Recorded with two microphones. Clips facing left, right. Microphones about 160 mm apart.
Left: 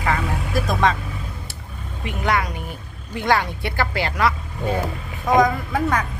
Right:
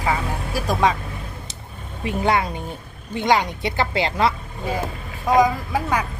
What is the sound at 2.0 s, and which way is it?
Speech, 25° right (ahead or behind).